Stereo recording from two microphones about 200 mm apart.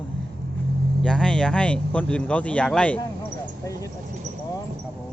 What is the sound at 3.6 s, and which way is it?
Speech, 15° left (ahead or behind).